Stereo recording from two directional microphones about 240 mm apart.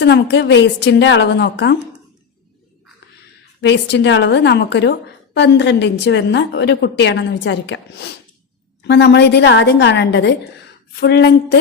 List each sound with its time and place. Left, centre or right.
0.0 s a woman's voice: left
3.6 s a woman's voice: left